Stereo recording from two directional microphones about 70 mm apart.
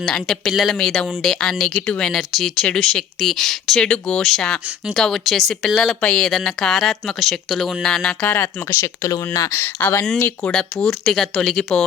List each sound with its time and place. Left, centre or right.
0.0 s speech: centre
2.1 s speech: centre
2.6 s speech: centre
3.2 s speech: centre
3.8 s speech: centre
8.2 s speech: left
8.7 s speech: left
9.5 s speech: left
10.4 s speech: centre